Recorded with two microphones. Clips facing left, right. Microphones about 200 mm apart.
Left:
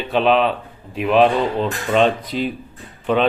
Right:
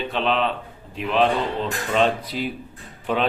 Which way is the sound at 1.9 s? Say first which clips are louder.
Left 4 dB; 10° right (ahead or behind).